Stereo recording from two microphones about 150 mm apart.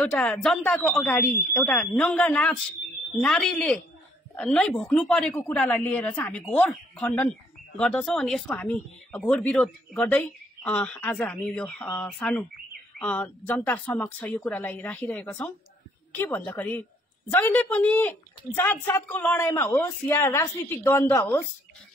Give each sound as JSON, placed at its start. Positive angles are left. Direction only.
{"t": 0.0, "sound": "a woman's voice", "side_deg": 5}